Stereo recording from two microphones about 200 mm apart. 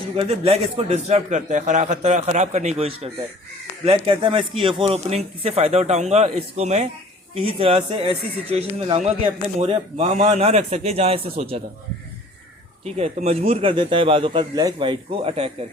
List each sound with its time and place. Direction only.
0.2 s a man's voice: 30° right (ahead or behind)
12.8 s speech: 30° right (ahead or behind)